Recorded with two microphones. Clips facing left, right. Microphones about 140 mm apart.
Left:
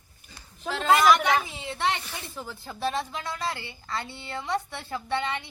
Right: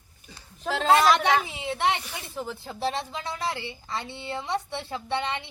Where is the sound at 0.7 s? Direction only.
30° right (ahead or behind).